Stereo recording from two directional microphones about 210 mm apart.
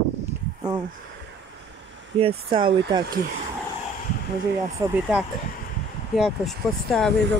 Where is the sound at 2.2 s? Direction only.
25° right (ahead or behind).